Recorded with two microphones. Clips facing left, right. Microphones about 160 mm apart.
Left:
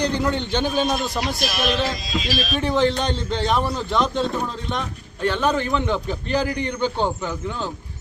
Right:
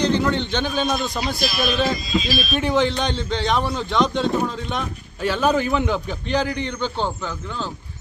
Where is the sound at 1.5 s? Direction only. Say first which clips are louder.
Right 1 dB; 75° left (ahead or behind).